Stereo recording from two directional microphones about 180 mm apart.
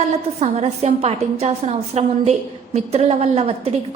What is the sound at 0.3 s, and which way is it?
A woman's voice, 35° right (ahead or behind).